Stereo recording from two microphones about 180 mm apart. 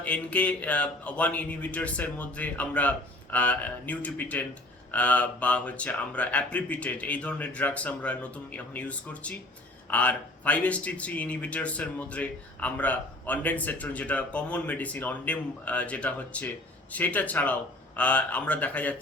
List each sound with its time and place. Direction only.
0.0 s speech: 5° left (ahead or behind)